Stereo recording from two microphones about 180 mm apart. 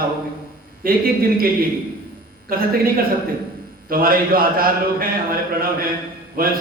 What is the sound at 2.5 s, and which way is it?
Speech, 55° right (ahead or behind).